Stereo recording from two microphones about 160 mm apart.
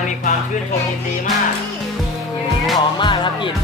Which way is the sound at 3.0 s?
30° left (ahead or behind).